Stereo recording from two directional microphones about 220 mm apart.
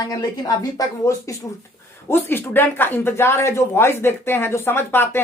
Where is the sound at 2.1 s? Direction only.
10° left (ahead or behind).